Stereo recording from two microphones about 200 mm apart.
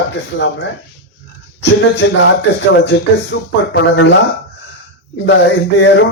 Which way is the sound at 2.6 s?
65° left (ahead or behind).